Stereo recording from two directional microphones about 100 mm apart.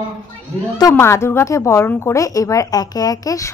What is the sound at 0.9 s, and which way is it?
A woman's voice, 25° left (ahead or behind).